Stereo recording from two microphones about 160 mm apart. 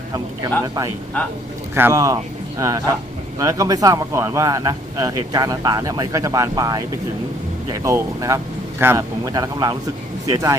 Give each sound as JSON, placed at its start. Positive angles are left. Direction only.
{"t": 1.7, "sound": "speech", "side_deg": -20}
{"t": 7.9, "sound": "speech", "side_deg": -20}